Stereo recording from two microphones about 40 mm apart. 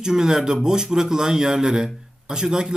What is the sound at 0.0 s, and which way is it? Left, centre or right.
Speech, centre.